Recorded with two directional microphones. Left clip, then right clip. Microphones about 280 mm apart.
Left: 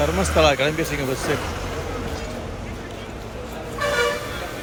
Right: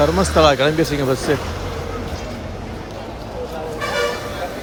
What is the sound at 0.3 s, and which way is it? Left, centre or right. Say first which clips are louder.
Speech: right 4 dB; centre.